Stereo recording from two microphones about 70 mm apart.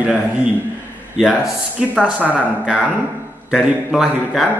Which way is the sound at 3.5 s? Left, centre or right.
Centre.